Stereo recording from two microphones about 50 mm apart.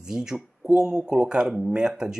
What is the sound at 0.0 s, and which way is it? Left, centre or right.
Speech, centre.